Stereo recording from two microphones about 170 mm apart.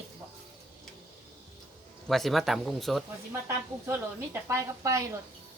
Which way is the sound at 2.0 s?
Centre (ahead or behind).